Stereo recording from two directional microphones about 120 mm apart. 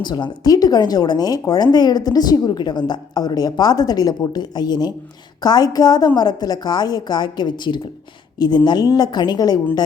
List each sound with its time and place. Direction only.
0.0 s speech: 35° left (ahead or behind)